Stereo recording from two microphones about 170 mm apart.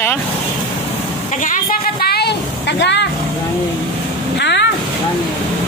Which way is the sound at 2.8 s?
90° left.